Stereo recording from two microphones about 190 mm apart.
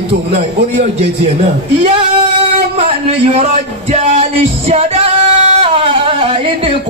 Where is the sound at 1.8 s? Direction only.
30° right (ahead or behind).